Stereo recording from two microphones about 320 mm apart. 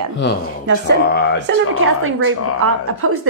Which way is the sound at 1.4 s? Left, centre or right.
Right.